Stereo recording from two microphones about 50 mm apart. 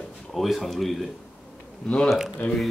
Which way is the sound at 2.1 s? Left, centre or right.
Centre.